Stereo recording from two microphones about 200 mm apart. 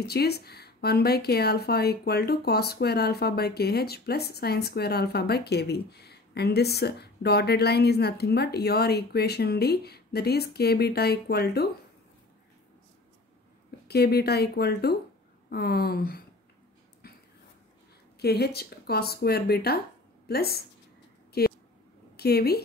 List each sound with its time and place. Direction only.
0.0 s speech: 55° left (ahead or behind)
13.8 s speech: 55° left (ahead or behind)
17.0 s a sound: 50° left (ahead or behind)
18.2 s a woman's voice: 55° left (ahead or behind)